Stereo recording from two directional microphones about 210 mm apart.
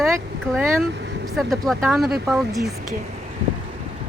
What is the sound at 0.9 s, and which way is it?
Vehicle, 55° right (ahead or behind).